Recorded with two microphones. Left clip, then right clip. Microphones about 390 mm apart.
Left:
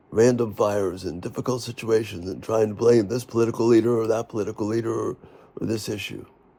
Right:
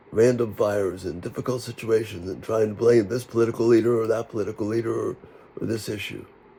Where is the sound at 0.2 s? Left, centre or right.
Centre.